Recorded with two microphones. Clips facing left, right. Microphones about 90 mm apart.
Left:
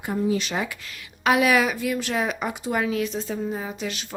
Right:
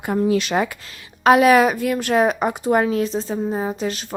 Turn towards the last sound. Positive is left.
turn(degrees=-40)  # may be behind; listen again after turning